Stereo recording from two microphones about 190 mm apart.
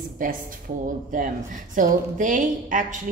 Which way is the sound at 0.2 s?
45° right (ahead or behind).